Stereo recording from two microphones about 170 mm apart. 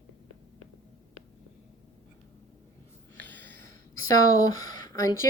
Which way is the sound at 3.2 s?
10° left (ahead or behind).